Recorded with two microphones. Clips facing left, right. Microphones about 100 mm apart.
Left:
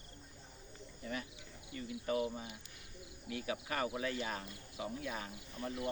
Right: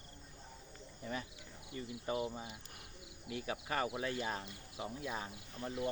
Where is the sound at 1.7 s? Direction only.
25° right (ahead or behind).